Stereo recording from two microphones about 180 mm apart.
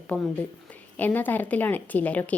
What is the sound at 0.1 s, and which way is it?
Speech, 5° left (ahead or behind).